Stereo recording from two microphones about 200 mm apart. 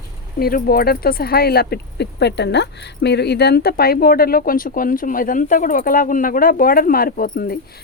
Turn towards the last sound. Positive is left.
turn(degrees=50)  # may be behind; listen again after turning